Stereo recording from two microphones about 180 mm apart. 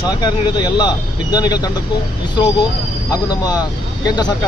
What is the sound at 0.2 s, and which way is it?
Speech, 25° left (ahead or behind).